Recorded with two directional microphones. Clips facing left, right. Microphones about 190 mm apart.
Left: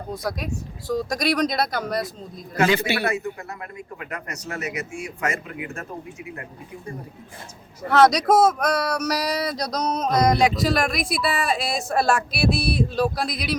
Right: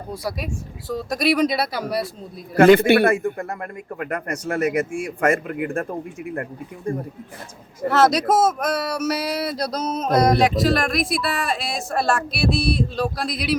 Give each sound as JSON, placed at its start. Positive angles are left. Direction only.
{"t": 0.1, "sound": "speech", "side_deg": -10}
{"t": 2.6, "sound": "speech", "side_deg": -55}
{"t": 7.9, "sound": "speech", "side_deg": -5}